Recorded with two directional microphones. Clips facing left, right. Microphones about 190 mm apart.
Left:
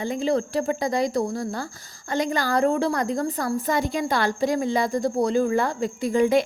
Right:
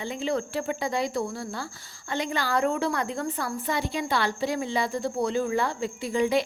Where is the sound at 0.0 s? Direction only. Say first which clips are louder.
Left 5 dB; 40° left (ahead or behind).